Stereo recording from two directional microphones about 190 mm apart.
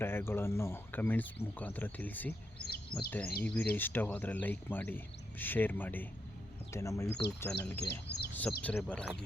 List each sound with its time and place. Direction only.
0.0 s speech: 10° left (ahead or behind)
7.9 s speech: 60° left (ahead or behind)
8.3 s a sound: 10° left (ahead or behind)
8.6 s speech: 5° left (ahead or behind)